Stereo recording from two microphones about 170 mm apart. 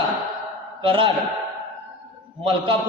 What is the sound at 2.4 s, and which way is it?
Speech, 30° right (ahead or behind).